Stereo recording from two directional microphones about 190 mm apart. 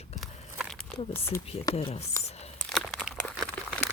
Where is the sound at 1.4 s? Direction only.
30° left (ahead or behind).